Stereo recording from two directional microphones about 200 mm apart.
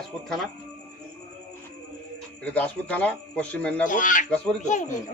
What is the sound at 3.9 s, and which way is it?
Speech, 40° left (ahead or behind).